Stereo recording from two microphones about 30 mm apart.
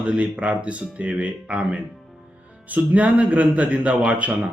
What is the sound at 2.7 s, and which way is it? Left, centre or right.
A man's voice, right.